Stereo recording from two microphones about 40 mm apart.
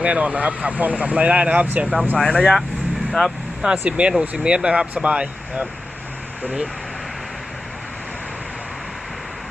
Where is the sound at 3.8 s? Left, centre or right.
Right.